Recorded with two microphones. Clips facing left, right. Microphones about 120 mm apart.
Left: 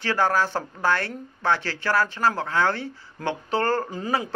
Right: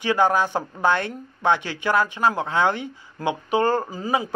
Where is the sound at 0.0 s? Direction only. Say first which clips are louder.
Right 3 dB; 15° right (ahead or behind).